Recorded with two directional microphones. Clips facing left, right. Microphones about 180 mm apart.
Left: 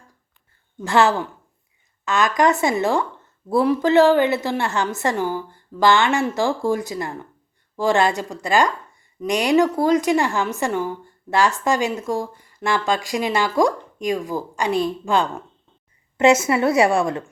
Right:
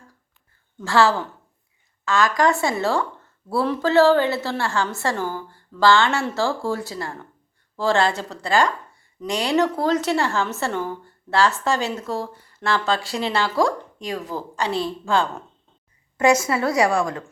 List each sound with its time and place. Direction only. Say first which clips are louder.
0.8 s a woman's voice: left 1 dB; 20° left (ahead or behind)